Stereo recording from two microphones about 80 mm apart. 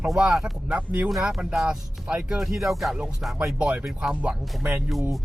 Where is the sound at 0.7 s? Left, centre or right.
Centre.